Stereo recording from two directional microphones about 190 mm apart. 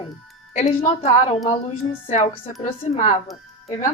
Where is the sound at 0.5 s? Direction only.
35° left (ahead or behind).